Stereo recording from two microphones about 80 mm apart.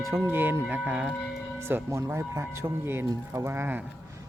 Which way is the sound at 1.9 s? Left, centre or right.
Right.